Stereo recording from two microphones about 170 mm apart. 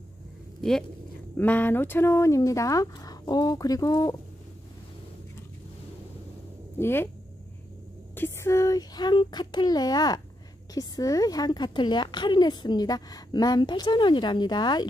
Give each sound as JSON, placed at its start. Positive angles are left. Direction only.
{"t": 0.6, "sound": "a woman's voice", "side_deg": 5}
{"t": 6.8, "sound": "speech", "side_deg": 15}
{"t": 8.2, "sound": "a woman's voice", "side_deg": 15}